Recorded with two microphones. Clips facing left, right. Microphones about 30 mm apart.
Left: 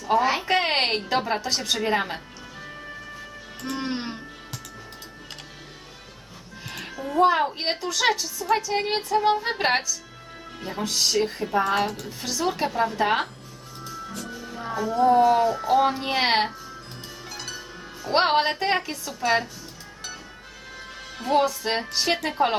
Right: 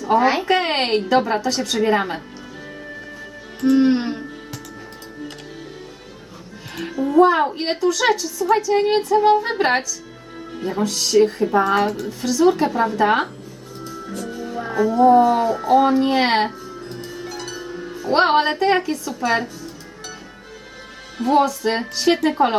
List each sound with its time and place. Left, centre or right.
0.0 s speech: centre
0.5 s a woman's voice: centre
3.6 s music: centre
6.7 s a woman's voice: centre
10.8 s a woman's voice: centre
12.2 s a woman's voice: centre
14.1 s music: centre
15.1 s a woman's voice: centre
17.2 s music: centre
18.3 s a woman's voice: centre
21.2 s a woman's voice: centre